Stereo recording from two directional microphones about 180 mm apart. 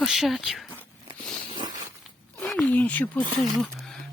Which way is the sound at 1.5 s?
25° right (ahead or behind).